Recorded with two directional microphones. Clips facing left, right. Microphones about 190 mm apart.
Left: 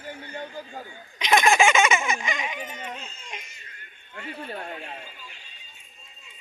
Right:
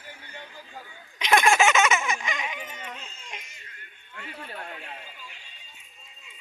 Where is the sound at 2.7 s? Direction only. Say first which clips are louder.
Left 4 dB; 35° left (ahead or behind).